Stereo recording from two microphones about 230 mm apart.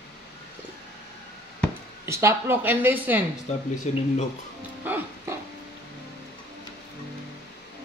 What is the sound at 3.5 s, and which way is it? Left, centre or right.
Speech, left.